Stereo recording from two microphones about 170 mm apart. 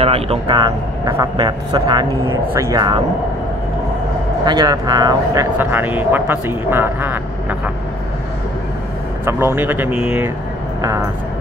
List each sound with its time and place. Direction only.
0.0 s speech: 35° right (ahead or behind)
4.5 s speech: 25° right (ahead or behind)
9.2 s speech: 15° right (ahead or behind)